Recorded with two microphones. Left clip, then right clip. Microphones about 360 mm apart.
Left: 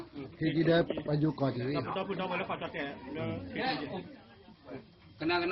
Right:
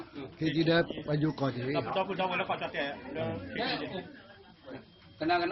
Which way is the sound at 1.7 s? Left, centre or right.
Right.